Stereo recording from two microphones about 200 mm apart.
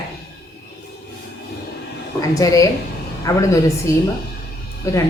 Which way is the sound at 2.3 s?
15° left (ahead or behind).